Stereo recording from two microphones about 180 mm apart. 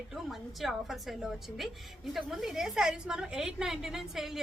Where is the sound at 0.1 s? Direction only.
Centre (ahead or behind).